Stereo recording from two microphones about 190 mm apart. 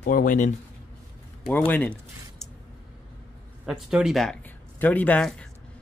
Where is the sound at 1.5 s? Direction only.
10° left (ahead or behind).